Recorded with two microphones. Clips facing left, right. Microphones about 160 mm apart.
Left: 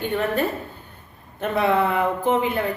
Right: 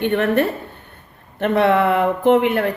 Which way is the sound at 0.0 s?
70° right (ahead or behind).